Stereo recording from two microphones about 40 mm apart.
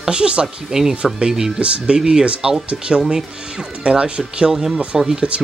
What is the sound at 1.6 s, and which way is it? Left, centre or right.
Speech, right.